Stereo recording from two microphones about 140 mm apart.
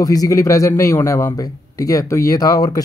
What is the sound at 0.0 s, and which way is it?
A man's voice, 25° left (ahead or behind).